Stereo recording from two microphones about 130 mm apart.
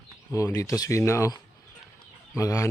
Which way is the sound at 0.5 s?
30° left (ahead or behind).